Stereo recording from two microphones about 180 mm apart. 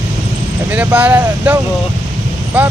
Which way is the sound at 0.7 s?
10° right (ahead or behind).